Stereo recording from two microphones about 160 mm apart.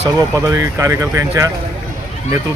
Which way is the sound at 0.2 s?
20° right (ahead or behind).